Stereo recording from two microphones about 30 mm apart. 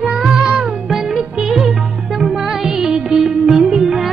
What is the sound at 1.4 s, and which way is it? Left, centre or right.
Music, centre.